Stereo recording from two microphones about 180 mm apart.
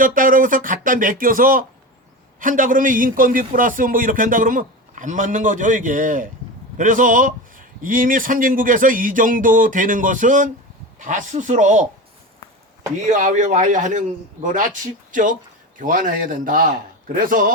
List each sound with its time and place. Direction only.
0.0 s a man's voice: 50° right (ahead or behind)
13.1 s a man's voice: 45° right (ahead or behind)